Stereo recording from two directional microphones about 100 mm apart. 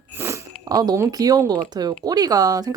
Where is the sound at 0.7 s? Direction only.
40° right (ahead or behind).